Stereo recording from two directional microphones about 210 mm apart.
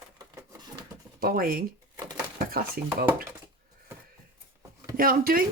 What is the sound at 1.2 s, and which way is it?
Speech, 45° right (ahead or behind).